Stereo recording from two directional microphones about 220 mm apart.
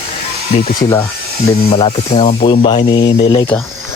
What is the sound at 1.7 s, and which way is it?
Speech, 25° left (ahead or behind).